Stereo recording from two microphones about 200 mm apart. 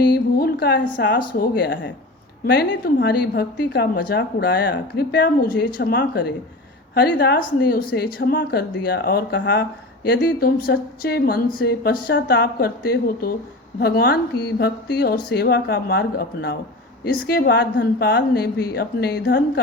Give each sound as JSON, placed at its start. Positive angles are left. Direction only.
{"t": 0.0, "sound": "a woman's voice", "side_deg": 50}
{"t": 1.4, "sound": "a woman's voice", "side_deg": 50}